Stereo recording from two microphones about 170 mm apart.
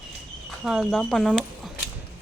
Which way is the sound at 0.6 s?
5° right (ahead or behind).